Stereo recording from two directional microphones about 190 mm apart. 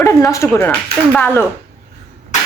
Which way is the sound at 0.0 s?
15° left (ahead or behind).